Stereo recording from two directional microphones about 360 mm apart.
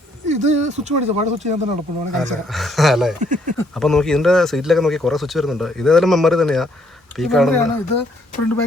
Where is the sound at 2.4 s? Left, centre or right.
Centre.